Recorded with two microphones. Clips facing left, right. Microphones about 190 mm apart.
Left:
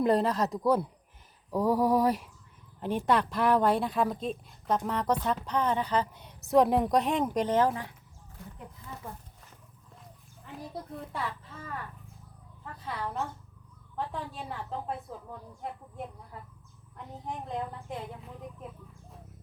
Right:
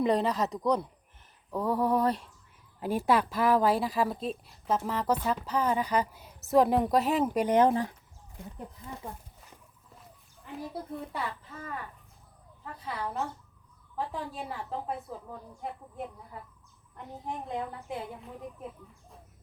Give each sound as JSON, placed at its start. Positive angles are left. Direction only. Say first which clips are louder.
{"t": 0.0, "sound": "a woman's voice", "louder": "left 1 dB", "side_deg": 0}
{"t": 1.5, "sound": "a sound", "louder": "left 2 dB", "side_deg": 10}
{"t": 2.8, "sound": "a woman's voice", "louder": "right 1 dB", "side_deg": -5}
{"t": 7.7, "sound": "speech", "louder": "right 7 dB", "side_deg": -35}
{"t": 9.0, "sound": "speech", "louder": "right 1 dB", "side_deg": -15}
{"t": 10.9, "sound": "a woman's voice", "louder": "even", "side_deg": 0}
{"t": 12.8, "sound": "a woman's voice", "louder": "right 1 dB", "side_deg": 0}
{"t": 17.2, "sound": "a woman's voice", "louder": "even", "side_deg": 0}